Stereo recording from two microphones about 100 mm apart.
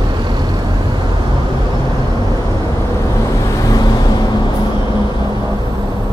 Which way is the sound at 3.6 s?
35° left (ahead or behind).